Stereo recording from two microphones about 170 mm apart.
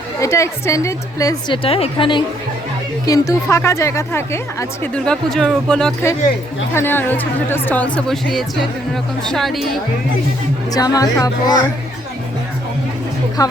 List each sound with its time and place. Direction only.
0.2 s a woman's voice: 15° left (ahead or behind)
1.6 s a woman's voice: 35° left (ahead or behind)
3.1 s a woman's voice: 20° left (ahead or behind)
4.8 s a woman's voice: 5° left (ahead or behind)
10.8 s speech: 20° left (ahead or behind)
13.4 s speech: 20° left (ahead or behind)